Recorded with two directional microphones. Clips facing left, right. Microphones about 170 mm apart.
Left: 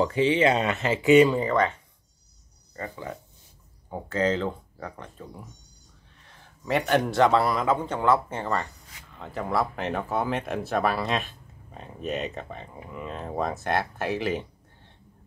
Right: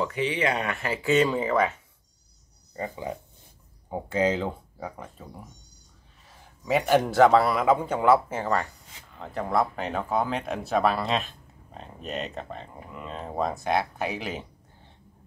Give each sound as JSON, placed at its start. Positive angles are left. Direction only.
{"t": 0.0, "sound": "speech", "side_deg": 30}
{"t": 1.3, "sound": "speech", "side_deg": -5}
{"t": 2.7, "sound": "a man's voice", "side_deg": -20}